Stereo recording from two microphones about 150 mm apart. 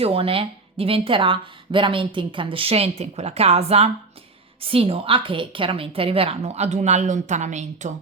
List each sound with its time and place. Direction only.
0.0 s a woman's voice: 40° right (ahead or behind)